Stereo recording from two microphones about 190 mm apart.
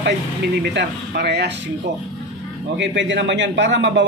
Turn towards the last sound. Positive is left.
turn(degrees=-70)  # may be behind; listen again after turning